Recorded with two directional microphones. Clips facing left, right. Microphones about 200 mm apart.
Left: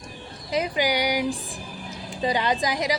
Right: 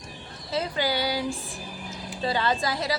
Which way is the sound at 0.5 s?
15° left (ahead or behind).